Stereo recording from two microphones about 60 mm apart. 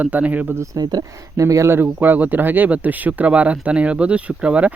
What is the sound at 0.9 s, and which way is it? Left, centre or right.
Speech, right.